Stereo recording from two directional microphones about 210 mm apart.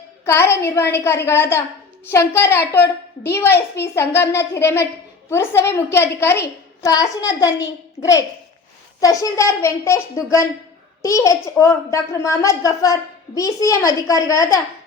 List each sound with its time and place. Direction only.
0.3 s a child's voice: 10° left (ahead or behind)